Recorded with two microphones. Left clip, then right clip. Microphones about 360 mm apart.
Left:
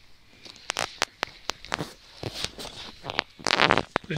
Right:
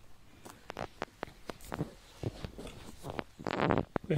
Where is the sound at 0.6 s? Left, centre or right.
Left.